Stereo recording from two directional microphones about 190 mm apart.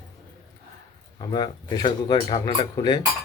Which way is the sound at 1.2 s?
20° left (ahead or behind).